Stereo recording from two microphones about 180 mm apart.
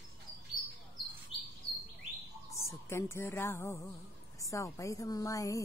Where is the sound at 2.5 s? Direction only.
15° left (ahead or behind).